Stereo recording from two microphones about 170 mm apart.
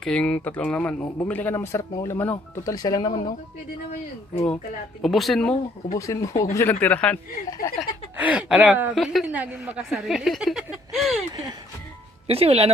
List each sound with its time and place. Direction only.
0.0 s speech: 5° left (ahead or behind); by 3.3 s 25° left (ahead or behind)
5.0 s a woman's voice: centre (ahead or behind)
5.9 s speech: 20° left (ahead or behind)
7.6 s speech: 60° left (ahead or behind)
8.1 s a woman's voice: 10° right (ahead or behind)
12.3 s speech: 35° right (ahead or behind)